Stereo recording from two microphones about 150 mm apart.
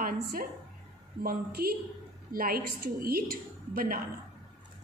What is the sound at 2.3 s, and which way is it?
A woman's voice, 80° right.